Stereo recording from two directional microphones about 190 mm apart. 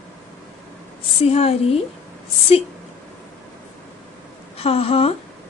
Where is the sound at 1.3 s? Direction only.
30° left (ahead or behind).